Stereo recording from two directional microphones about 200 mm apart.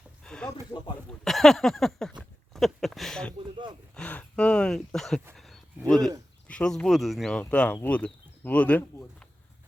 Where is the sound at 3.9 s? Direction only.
5° left (ahead or behind).